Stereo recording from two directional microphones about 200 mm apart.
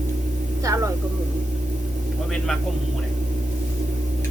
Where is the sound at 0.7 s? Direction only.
15° right (ahead or behind).